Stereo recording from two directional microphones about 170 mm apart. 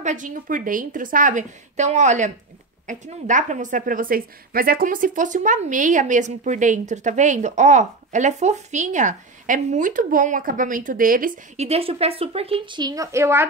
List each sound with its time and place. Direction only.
0.0 s a woman's voice: 50° right (ahead or behind)
11.5 s a woman's voice: 40° right (ahead or behind); by 13.5 s 15° right (ahead or behind)